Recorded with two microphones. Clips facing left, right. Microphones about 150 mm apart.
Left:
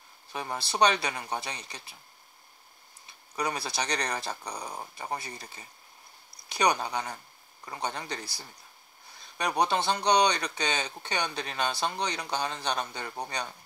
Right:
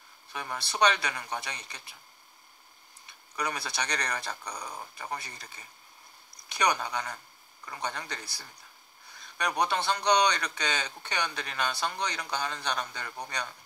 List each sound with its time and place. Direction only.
0.3 s speech: 30° left (ahead or behind)
3.1 s speech: 30° left (ahead or behind)